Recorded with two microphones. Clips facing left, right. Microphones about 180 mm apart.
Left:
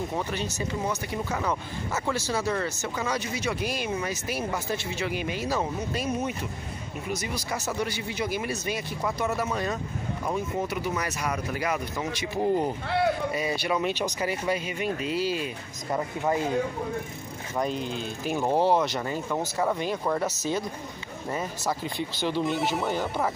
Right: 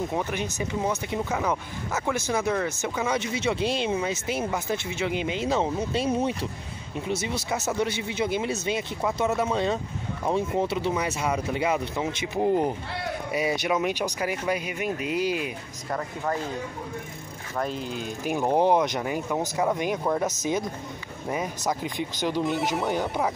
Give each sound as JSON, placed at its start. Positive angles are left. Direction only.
{"t": 0.3, "sound": "speech", "side_deg": -15}
{"t": 2.2, "sound": "speech", "side_deg": -20}
{"t": 15.9, "sound": "speech", "side_deg": 15}
{"t": 17.6, "sound": "speech", "side_deg": -10}
{"t": 19.4, "sound": "speech", "side_deg": 0}
{"t": 19.7, "sound": "speech", "side_deg": -15}
{"t": 21.3, "sound": "speech", "side_deg": -15}
{"t": 22.4, "sound": "speech", "side_deg": 0}